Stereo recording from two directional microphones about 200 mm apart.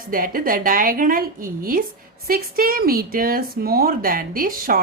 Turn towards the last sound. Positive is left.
turn(degrees=-45)  # may be behind; listen again after turning